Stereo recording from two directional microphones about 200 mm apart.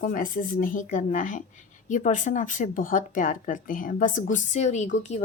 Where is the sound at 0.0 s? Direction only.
45° left (ahead or behind).